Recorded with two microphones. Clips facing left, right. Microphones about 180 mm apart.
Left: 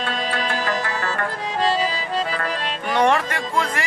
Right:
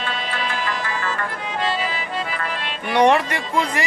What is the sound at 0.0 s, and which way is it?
Music, 40° left (ahead or behind).